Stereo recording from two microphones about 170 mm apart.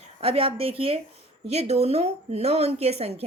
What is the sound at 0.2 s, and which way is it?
A woman's voice, 35° right (ahead or behind).